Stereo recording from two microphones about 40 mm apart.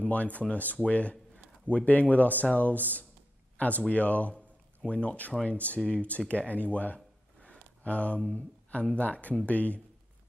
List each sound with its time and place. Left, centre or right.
0.0 s speech: left
7.4 s a sound: left
8.3 s speech: left